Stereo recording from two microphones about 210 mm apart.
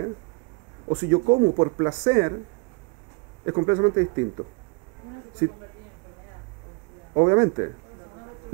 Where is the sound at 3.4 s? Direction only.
20° right (ahead or behind).